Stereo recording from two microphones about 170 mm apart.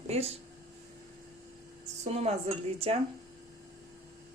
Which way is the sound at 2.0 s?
40° right (ahead or behind).